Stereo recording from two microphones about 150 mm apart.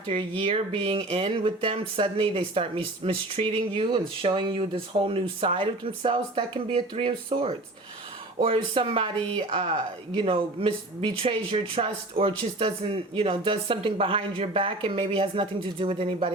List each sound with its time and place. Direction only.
0.1 s speech: 35° right (ahead or behind)